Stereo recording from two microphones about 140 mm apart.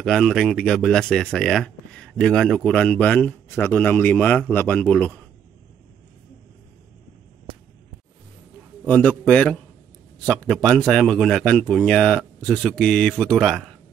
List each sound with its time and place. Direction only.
0.0 s speech: centre (ahead or behind)
8.8 s speech: 10° left (ahead or behind)